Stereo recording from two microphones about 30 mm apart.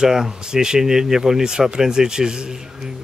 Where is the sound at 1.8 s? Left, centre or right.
Right.